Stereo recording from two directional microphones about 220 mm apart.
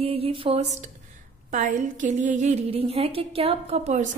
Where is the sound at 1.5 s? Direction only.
35° right (ahead or behind).